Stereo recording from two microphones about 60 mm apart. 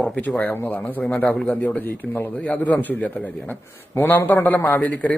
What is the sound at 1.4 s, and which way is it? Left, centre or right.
A man's voice, left.